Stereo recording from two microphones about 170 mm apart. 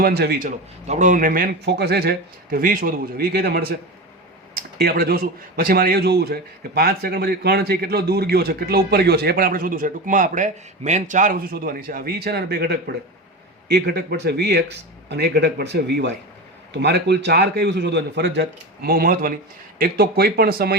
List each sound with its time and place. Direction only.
0.0 s a man's voice: 65° right (ahead or behind)
1.6 s a man's voice: 70° right (ahead or behind)
4.8 s a man's voice: 65° right (ahead or behind)